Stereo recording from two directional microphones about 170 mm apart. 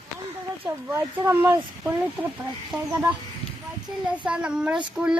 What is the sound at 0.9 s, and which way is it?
Speech, 15° right (ahead or behind).